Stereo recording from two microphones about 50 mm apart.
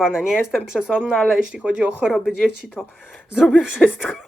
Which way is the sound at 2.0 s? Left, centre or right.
Centre.